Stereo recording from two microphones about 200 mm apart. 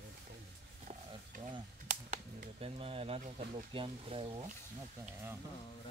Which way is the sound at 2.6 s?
30° right (ahead or behind).